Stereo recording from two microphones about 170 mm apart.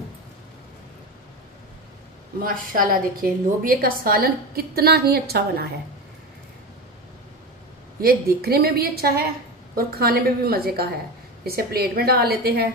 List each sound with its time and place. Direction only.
2.4 s a woman's voice: 55° right (ahead or behind)
8.0 s a woman's voice: 65° right (ahead or behind)